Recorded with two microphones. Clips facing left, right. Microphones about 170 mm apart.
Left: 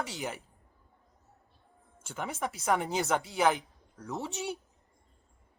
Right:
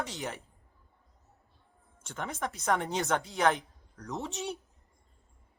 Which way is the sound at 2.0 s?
5° left (ahead or behind).